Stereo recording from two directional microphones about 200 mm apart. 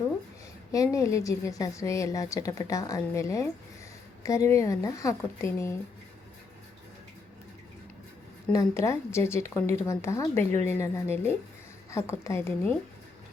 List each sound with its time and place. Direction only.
0.7 s a woman's voice: 15° left (ahead or behind)
8.5 s a woman's voice: 15° left (ahead or behind)